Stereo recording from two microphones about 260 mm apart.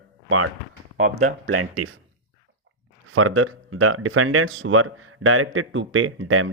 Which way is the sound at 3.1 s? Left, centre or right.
Right.